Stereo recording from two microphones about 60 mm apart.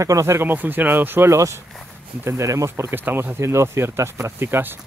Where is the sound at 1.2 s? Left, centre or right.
Right.